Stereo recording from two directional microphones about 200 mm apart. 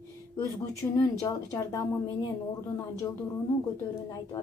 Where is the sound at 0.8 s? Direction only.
10° left (ahead or behind).